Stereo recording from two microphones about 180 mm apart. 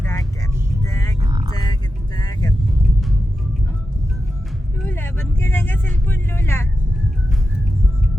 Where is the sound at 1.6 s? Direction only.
20° left (ahead or behind).